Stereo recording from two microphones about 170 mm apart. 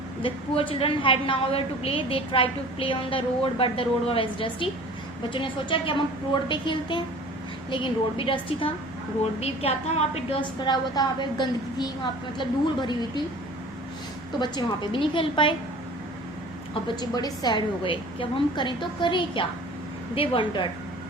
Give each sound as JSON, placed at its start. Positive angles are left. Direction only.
{"t": 0.2, "sound": "a woman's voice", "side_deg": 30}
{"t": 10.7, "sound": "a woman's voice", "side_deg": 25}
{"t": 14.3, "sound": "a woman's voice", "side_deg": 25}
{"t": 17.0, "sound": "a woman's voice", "side_deg": 25}